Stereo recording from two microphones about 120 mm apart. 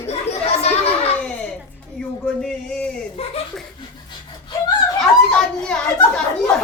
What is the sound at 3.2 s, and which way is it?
Speech, 55° left (ahead or behind).